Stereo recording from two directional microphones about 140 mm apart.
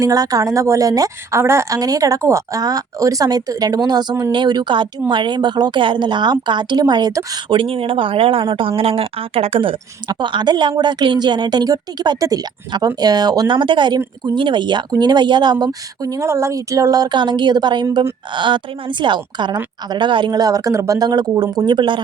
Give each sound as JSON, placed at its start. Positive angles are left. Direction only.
{"t": 0.0, "sound": "a woman's voice", "side_deg": -25}
{"t": 7.5, "sound": "a woman's voice", "side_deg": -40}
{"t": 17.8, "sound": "a woman's voice", "side_deg": -20}
{"t": 18.3, "sound": "a woman's voice", "side_deg": -35}